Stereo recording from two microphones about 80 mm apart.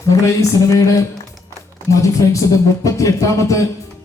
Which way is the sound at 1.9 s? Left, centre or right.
Left.